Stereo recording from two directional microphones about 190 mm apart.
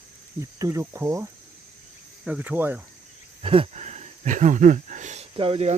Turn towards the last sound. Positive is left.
turn(degrees=-30)  # may be behind; listen again after turning